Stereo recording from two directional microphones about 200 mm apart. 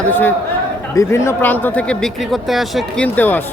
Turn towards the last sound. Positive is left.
turn(degrees=10)  # may be behind; listen again after turning